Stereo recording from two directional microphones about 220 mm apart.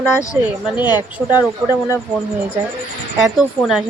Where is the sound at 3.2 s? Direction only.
Centre (ahead or behind).